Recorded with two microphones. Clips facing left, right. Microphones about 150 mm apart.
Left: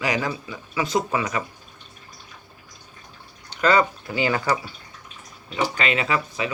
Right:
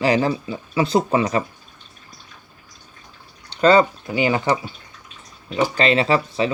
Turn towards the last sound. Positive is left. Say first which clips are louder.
# right 6 dB
turn(degrees=-30)  # may be behind; listen again after turning